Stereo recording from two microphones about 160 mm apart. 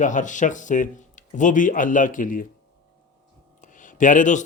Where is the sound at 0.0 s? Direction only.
50° left (ahead or behind).